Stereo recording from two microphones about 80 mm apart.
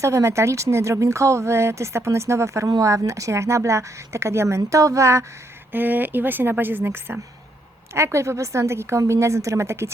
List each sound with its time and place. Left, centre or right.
0.0 s speech: right
5.7 s a woman's voice: right